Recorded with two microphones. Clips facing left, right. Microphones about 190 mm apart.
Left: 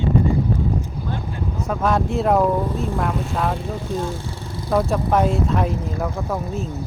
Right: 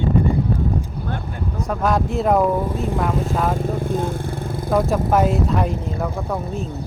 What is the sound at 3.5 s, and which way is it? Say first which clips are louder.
Vehicle: right 4 dB; 55° right (ahead or behind).